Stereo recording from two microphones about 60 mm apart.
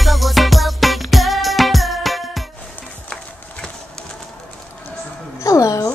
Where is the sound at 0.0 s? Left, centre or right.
Centre.